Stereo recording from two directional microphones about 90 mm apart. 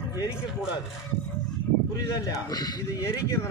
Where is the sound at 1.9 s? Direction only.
40° left (ahead or behind).